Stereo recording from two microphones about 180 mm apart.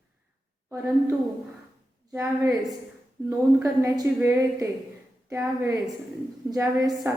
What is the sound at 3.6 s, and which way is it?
A woman's voice, 15° right (ahead or behind).